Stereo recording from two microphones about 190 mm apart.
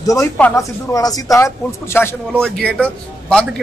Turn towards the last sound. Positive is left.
turn(degrees=5)  # may be behind; listen again after turning